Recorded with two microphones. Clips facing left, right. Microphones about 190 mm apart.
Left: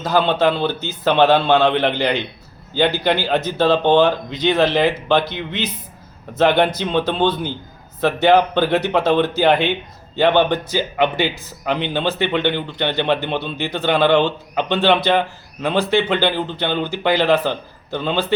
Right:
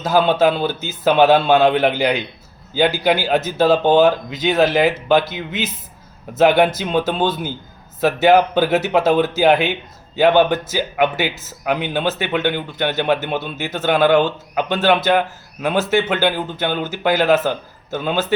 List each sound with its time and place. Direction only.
0.0 s speech: 5° right (ahead or behind)